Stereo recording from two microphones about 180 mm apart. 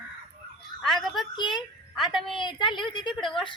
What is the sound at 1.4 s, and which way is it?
Speech, 25° left (ahead or behind).